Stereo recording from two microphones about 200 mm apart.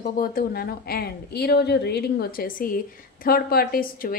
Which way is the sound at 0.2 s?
45° left (ahead or behind).